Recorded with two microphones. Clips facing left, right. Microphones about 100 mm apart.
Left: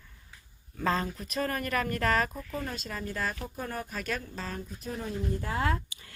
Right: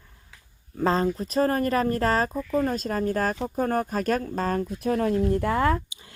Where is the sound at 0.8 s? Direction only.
35° right (ahead or behind).